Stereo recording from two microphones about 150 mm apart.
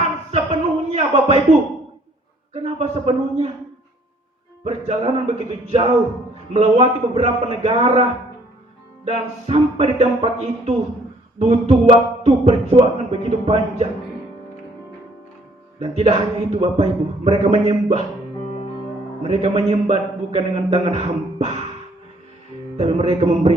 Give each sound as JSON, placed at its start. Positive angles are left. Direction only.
{"t": 0.3, "sound": "a sound", "side_deg": -45}
{"t": 2.5, "sound": "speech", "side_deg": -45}
{"t": 4.6, "sound": "speech", "side_deg": -40}
{"t": 9.0, "sound": "speech", "side_deg": -45}
{"t": 11.3, "sound": "speech", "side_deg": -45}
{"t": 15.8, "sound": "speech", "side_deg": -45}
{"t": 19.2, "sound": "speech", "side_deg": -40}
{"t": 22.8, "sound": "speech", "side_deg": -40}